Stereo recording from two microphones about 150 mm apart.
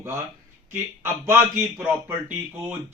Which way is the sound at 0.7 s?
15° right (ahead or behind).